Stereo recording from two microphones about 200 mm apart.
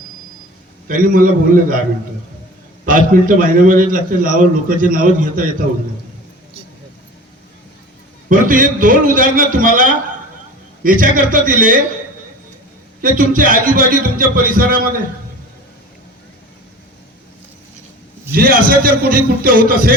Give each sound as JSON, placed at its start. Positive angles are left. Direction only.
{"t": 0.9, "sound": "a man's voice", "side_deg": -45}
{"t": 3.1, "sound": "a man's voice", "side_deg": -45}
{"t": 8.3, "sound": "a man's voice", "side_deg": -45}
{"t": 13.0, "sound": "a man's voice", "side_deg": -45}
{"t": 18.3, "sound": "a man's voice", "side_deg": -50}